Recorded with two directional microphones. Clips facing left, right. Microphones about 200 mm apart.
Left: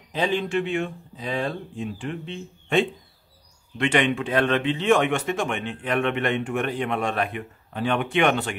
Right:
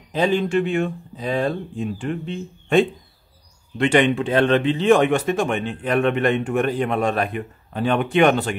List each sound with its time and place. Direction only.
0.1 s speech: 45° right (ahead or behind)